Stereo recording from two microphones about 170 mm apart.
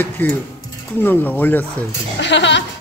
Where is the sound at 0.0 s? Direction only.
10° left (ahead or behind).